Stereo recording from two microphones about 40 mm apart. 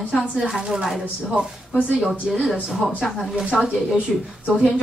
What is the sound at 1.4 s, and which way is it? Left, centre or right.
Speech, right.